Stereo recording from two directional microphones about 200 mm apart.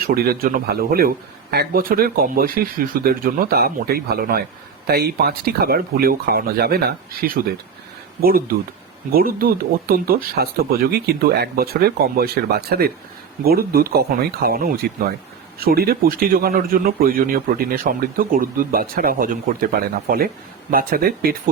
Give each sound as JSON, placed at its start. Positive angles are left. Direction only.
{"t": 0.0, "sound": "speech", "side_deg": -50}